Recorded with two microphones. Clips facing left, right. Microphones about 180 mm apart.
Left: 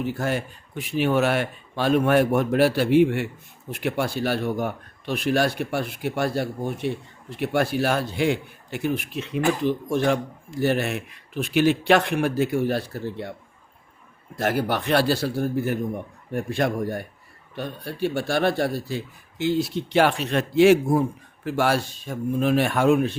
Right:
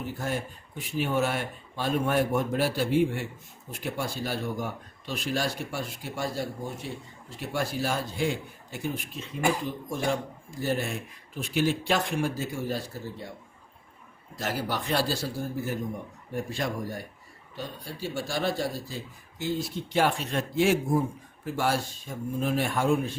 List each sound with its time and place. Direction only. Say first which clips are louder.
0.0 s speech: left 6 dB; 75° left (ahead or behind)
14.3 s a man's voice: left 7 dB; 55° left (ahead or behind); by 23.1 s 75° left (ahead or behind)